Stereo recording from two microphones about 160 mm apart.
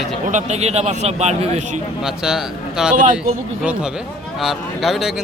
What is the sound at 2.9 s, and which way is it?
Speech, 55° right (ahead or behind).